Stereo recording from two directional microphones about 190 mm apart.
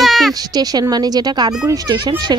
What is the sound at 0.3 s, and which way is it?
Speech, 20° right (ahead or behind).